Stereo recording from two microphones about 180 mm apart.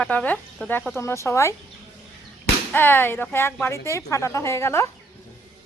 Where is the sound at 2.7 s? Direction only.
10° left (ahead or behind).